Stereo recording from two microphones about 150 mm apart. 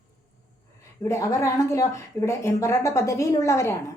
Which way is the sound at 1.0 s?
20° left (ahead or behind).